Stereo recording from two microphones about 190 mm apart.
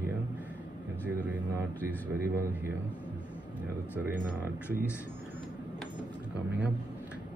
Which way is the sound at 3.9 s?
10° right (ahead or behind).